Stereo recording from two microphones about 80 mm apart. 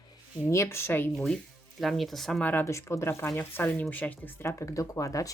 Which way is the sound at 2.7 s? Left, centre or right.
Left.